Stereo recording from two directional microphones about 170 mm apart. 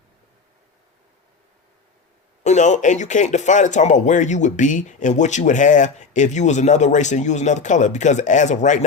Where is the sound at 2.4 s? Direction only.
45° left (ahead or behind).